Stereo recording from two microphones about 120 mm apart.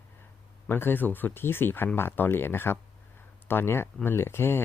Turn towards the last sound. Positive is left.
turn(degrees=20)  # may be behind; listen again after turning